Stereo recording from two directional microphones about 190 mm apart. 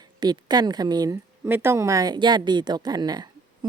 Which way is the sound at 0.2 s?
20° right (ahead or behind).